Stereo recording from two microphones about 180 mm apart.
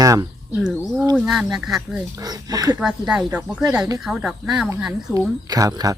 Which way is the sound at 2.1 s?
20° right (ahead or behind).